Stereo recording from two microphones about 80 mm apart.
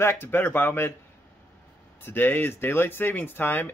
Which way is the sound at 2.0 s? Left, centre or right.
Left.